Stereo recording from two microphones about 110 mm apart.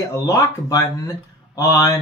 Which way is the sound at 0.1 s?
30° left (ahead or behind).